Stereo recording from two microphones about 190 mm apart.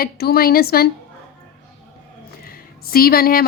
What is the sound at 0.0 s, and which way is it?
Speech, 55° left (ahead or behind).